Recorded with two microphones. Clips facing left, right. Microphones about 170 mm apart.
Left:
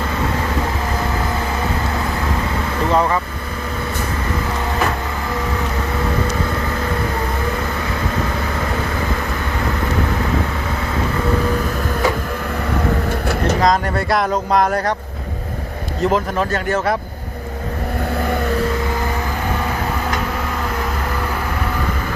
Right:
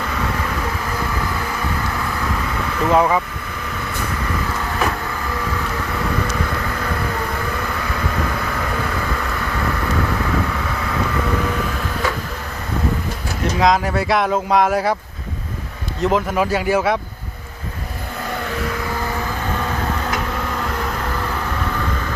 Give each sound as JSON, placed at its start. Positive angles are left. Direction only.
{"t": 2.9, "sound": "speech", "side_deg": -5}
{"t": 13.6, "sound": "speech", "side_deg": 0}
{"t": 16.0, "sound": "speech", "side_deg": -5}